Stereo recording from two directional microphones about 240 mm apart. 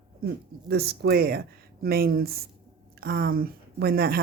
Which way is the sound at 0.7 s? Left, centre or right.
Right.